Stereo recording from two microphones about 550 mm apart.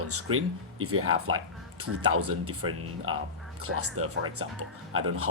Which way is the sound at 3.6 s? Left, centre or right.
Right.